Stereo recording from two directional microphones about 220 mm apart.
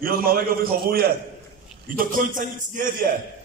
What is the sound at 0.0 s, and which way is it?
A man's voice, 40° right (ahead or behind).